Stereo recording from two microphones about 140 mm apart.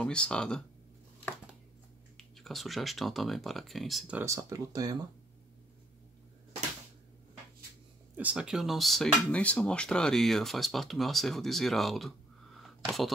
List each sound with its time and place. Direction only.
0.0 s speech: 5° left (ahead or behind)
2.1 s speech: centre (ahead or behind)
4.2 s speech: 20° right (ahead or behind)
8.2 s speech: 10° right (ahead or behind)
12.5 s a sound: centre (ahead or behind)